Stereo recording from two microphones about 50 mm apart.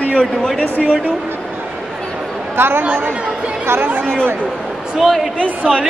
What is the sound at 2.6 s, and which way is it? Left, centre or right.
Speech, right.